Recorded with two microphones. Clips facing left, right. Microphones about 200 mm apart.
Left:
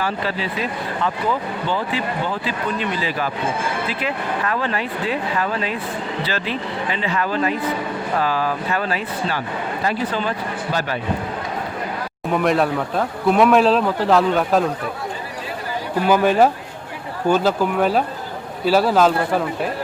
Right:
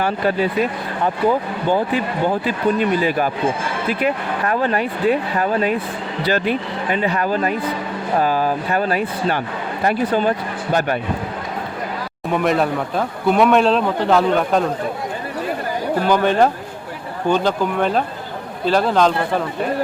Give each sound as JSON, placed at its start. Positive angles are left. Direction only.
{"t": 0.0, "sound": "speech", "side_deg": -50}
{"t": 4.6, "sound": "speech", "side_deg": -50}
{"t": 12.3, "sound": "speech", "side_deg": 0}
{"t": 16.0, "sound": "speech", "side_deg": 5}